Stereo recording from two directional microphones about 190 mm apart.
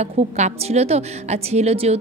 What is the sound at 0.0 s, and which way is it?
A woman's voice, 35° right (ahead or behind).